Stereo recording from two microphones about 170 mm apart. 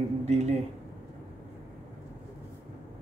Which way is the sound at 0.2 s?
40° right (ahead or behind).